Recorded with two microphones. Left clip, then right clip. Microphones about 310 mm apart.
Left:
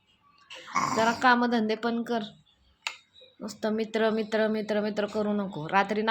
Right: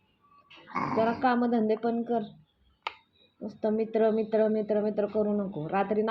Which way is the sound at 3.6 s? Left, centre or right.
Left.